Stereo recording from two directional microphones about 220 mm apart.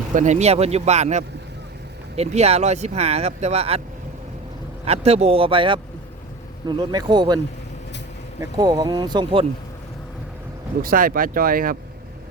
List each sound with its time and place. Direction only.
0.1 s speech: 35° right (ahead or behind)
4.9 s speech: 30° right (ahead or behind)
8.4 s speech: 20° right (ahead or behind)
10.8 s speech: 40° right (ahead or behind)